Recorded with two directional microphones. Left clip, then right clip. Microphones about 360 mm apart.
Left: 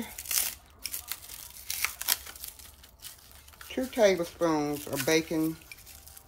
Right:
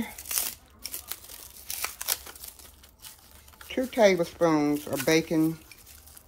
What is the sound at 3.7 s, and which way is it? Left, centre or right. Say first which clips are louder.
Speech: right 3 dB; right.